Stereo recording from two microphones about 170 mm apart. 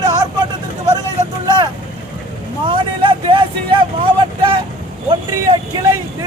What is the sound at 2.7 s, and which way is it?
Vehicle, 30° right (ahead or behind).